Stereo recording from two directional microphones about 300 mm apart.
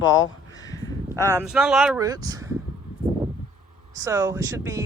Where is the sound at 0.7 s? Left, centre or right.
Centre.